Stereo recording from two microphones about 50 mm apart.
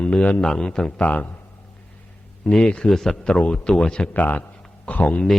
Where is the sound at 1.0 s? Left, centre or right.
Left.